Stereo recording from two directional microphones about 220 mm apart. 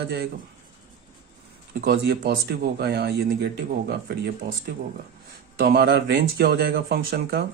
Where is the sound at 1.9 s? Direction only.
45° right (ahead or behind).